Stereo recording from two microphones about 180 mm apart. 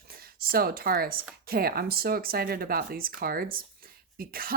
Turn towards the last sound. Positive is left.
turn(degrees=-55)  # may be behind; listen again after turning